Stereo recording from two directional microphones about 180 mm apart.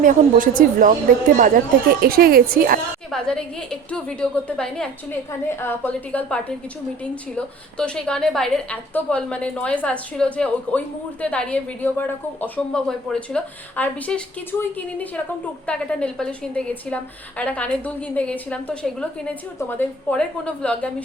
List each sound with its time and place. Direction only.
0.0 s a woman's voice: 50° right (ahead or behind)
3.1 s a woman's voice: 5° left (ahead or behind)